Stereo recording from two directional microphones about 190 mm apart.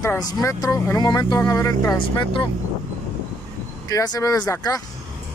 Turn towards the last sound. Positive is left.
turn(degrees=20)  # may be behind; listen again after turning